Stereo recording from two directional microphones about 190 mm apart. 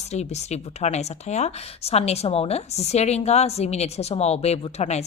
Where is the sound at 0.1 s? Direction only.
35° left (ahead or behind).